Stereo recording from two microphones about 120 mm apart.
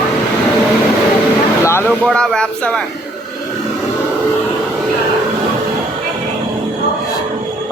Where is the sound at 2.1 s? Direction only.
5° left (ahead or behind).